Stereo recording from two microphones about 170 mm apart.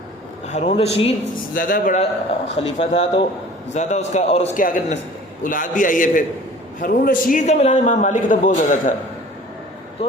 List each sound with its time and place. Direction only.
0.4 s a man's voice: 45° left (ahead or behind)
1.5 s a man's voice: 55° left (ahead or behind)
2.6 s a man's voice: 40° left (ahead or behind)
4.5 s a man's voice: 50° left (ahead or behind)